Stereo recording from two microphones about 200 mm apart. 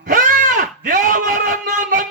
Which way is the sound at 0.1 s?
40° right (ahead or behind).